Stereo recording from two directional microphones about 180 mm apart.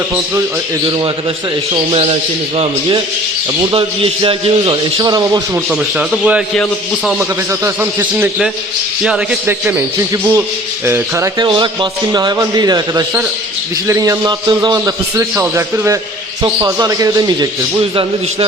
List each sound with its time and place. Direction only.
1.7 s a man's voice: 30° right (ahead or behind)
3.6 s a man's voice: 30° right (ahead or behind)
5.7 s speech: 5° right (ahead or behind)
7.2 s a man's voice: 15° right (ahead or behind)
11.3 s a man's voice: 25° right (ahead or behind)